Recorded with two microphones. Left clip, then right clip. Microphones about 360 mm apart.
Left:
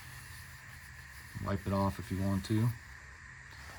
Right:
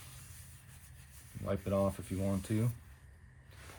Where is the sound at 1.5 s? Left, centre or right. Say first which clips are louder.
Right 1 dB; centre.